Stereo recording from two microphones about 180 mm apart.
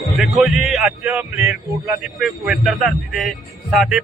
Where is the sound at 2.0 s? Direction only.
Centre (ahead or behind).